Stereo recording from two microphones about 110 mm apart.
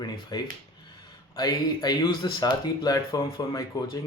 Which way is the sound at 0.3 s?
40° left (ahead or behind).